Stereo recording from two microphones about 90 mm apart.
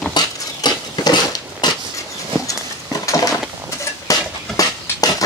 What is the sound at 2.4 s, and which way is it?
Horse, 40° left (ahead or behind).